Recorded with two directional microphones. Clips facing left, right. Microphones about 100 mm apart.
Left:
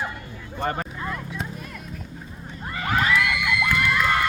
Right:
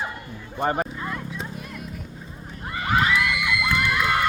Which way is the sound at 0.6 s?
20° right (ahead or behind).